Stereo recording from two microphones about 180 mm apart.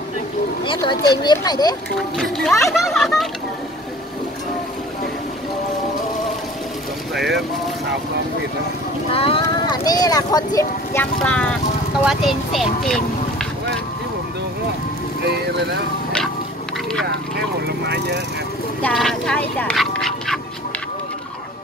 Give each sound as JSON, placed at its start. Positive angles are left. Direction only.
{"t": 0.7, "sound": "speech", "side_deg": 25}
{"t": 2.0, "sound": "speech", "side_deg": 0}
{"t": 7.2, "sound": "speech", "side_deg": 0}
{"t": 9.1, "sound": "speech", "side_deg": 30}
{"t": 12.0, "sound": "speech", "side_deg": 0}
{"t": 15.2, "sound": "speech", "side_deg": -70}
{"t": 17.8, "sound": "speech", "side_deg": -70}
{"t": 18.8, "sound": "speech", "side_deg": 5}